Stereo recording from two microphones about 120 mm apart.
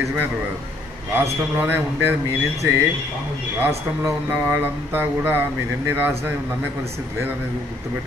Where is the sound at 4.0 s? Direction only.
15° right (ahead or behind).